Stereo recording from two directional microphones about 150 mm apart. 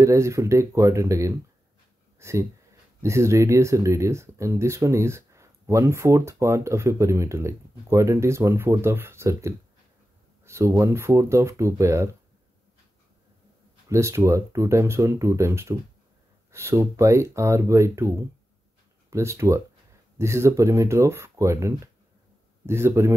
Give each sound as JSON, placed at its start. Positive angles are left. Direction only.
{"t": 0.0, "sound": "speech", "side_deg": -20}
{"t": 2.1, "sound": "a sound", "side_deg": -20}
{"t": 3.0, "sound": "speech", "side_deg": -20}
{"t": 13.8, "sound": "speech", "side_deg": -20}